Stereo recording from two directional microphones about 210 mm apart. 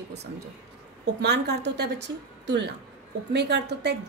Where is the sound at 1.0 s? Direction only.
50° right (ahead or behind).